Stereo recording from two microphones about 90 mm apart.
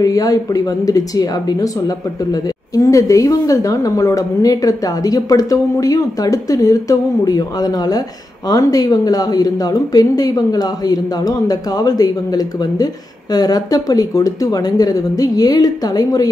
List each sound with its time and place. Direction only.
0.0 s a woman's voice: 40° left (ahead or behind)